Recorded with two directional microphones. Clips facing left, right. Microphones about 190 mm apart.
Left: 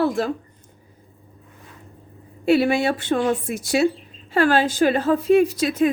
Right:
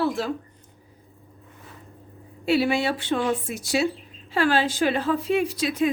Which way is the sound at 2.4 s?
50° left (ahead or behind).